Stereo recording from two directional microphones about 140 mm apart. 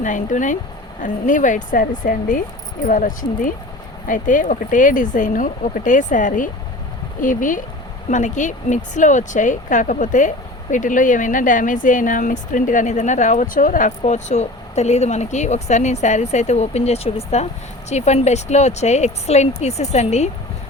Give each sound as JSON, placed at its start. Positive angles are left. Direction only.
{"t": 0.0, "sound": "speech", "side_deg": 65}
{"t": 8.1, "sound": "speech", "side_deg": 60}